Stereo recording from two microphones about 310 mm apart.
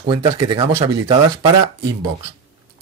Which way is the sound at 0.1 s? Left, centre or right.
Centre.